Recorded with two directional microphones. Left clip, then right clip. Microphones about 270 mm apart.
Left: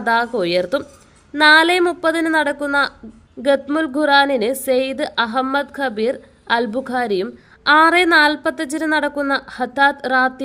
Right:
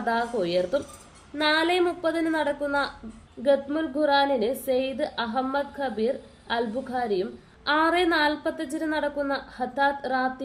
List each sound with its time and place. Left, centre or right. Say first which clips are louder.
0.0 s a woman's voice: left 8 dB; left